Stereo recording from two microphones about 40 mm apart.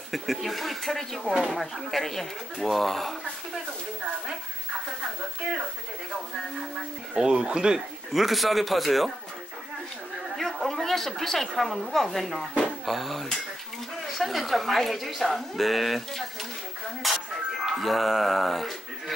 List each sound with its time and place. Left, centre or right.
0.1 s speech: centre
7.2 s speech: right
8.1 s speech: centre
10.3 s a woman's voice: centre